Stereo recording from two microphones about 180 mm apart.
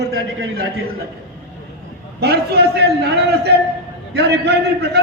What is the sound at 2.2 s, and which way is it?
A man's voice, 60° right (ahead or behind).